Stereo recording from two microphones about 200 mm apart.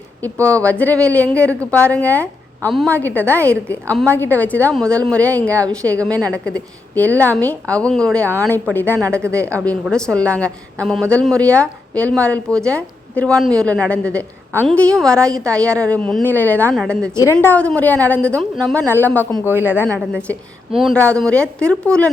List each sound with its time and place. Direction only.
0.4 s a woman's voice: 5° left (ahead or behind)
5.8 s speech: 15° right (ahead or behind)
6.3 s a woman's voice: 5° left (ahead or behind)
9.2 s speech: 15° right (ahead or behind)
9.9 s a woman's voice: 5° left (ahead or behind)
19.5 s speech: 10° right (ahead or behind)
20.7 s speech: centre (ahead or behind)